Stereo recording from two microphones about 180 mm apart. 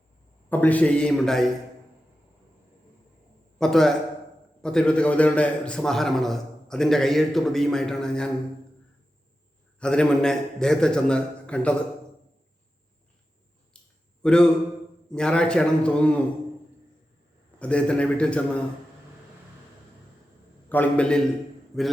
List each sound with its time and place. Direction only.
0.5 s a man's voice: 10° left (ahead or behind)
3.6 s a man's voice: centre (ahead or behind)
9.8 s a man's voice: 5° left (ahead or behind)
13.7 s a sound: 5° left (ahead or behind)
14.2 s a man's voice: 5° left (ahead or behind)
17.6 s a man's voice: 5° left (ahead or behind)
20.7 s a man's voice: 10° left (ahead or behind)